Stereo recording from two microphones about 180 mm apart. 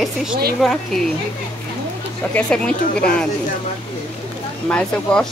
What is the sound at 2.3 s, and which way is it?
Speech, 5° left (ahead or behind).